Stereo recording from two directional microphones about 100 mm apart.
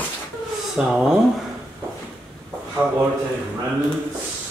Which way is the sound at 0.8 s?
5° right (ahead or behind).